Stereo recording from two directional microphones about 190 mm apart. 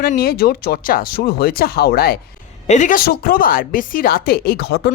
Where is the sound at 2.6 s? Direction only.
40° left (ahead or behind).